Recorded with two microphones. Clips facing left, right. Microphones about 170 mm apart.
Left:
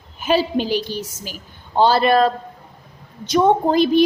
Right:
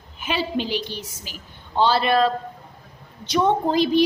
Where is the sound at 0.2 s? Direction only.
40° left (ahead or behind).